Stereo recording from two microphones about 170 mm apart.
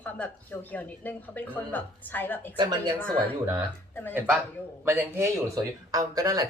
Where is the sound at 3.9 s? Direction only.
10° left (ahead or behind).